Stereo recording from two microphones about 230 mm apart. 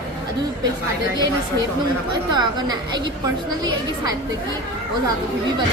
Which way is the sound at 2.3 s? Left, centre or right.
Centre.